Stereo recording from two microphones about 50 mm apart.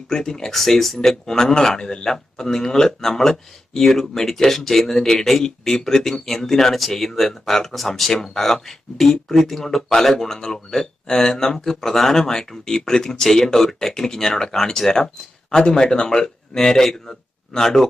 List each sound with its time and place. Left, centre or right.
0.1 s speech: centre